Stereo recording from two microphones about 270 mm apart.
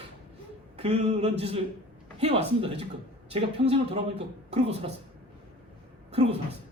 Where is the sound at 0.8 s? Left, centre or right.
Right.